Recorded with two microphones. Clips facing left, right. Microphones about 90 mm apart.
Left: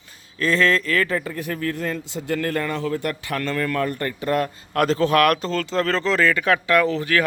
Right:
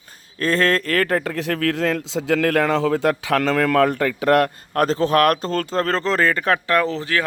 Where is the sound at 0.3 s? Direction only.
45° right (ahead or behind); by 4.5 s 75° right (ahead or behind).